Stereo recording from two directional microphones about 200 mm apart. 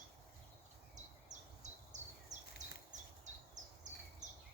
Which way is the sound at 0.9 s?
35° right (ahead or behind).